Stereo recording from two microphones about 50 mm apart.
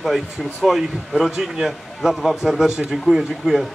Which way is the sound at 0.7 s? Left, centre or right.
Centre.